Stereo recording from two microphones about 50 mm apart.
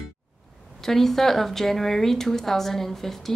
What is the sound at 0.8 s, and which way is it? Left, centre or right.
Speech, centre.